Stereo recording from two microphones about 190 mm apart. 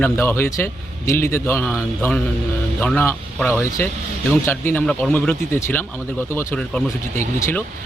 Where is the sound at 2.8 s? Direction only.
10° left (ahead or behind).